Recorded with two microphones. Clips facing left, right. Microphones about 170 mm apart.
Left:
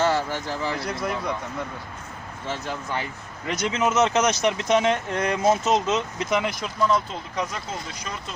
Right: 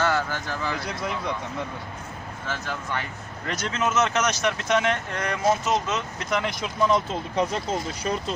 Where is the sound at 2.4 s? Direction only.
20° left (ahead or behind).